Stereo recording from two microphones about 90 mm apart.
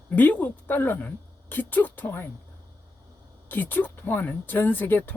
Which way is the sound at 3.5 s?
20° left (ahead or behind).